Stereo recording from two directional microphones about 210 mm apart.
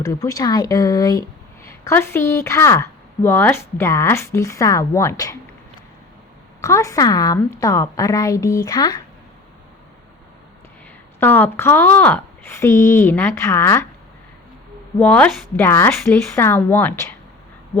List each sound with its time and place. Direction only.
0.0 s a woman's voice: 15° left (ahead or behind)
6.6 s a woman's voice: 15° left (ahead or behind)
11.2 s a woman's voice: 10° left (ahead or behind)
14.9 s a woman's voice: 5° left (ahead or behind)